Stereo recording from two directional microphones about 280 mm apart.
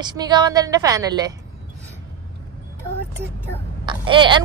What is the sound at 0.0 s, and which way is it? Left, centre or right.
A woman's voice, centre.